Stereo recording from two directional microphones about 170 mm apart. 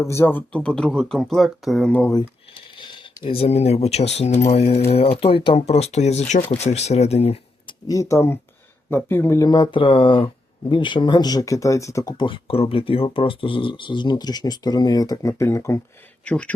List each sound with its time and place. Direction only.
0.0 s speech: 15° left (ahead or behind)
2.7 s speech: 30° left (ahead or behind)
7.9 s speech: 20° left (ahead or behind)